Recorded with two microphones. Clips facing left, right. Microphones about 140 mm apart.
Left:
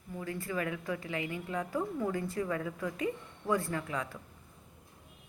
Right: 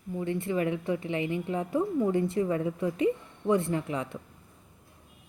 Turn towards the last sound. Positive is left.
turn(degrees=-25)  # may be behind; listen again after turning